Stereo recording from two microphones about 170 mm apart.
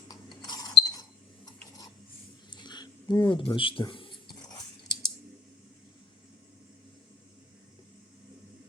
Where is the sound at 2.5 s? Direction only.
25° left (ahead or behind).